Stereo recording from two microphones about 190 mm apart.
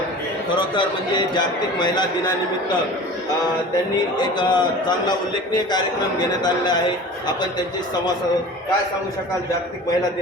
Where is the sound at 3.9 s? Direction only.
20° left (ahead or behind).